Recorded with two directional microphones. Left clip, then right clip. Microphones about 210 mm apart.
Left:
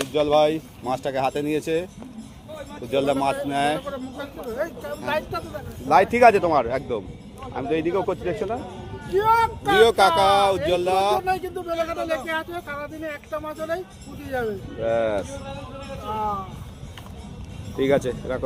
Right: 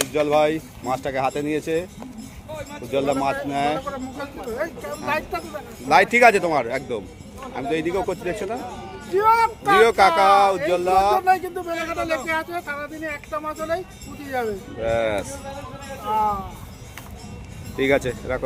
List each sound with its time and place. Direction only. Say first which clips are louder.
0.1 s speech: left 1 dB; 15° left (ahead or behind)
2.9 s speech: even; 20° left (ahead or behind)
3.8 s speech: right 2 dB; 5° left (ahead or behind)
9.7 s speech: right 1 dB; 20° left (ahead or behind)
11.2 s speech: right 5 dB; 10° right (ahead or behind)
17.7 s speech: right 1 dB; 10° left (ahead or behind)